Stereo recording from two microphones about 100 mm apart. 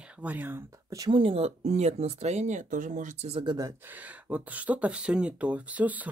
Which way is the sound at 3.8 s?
15° right (ahead or behind).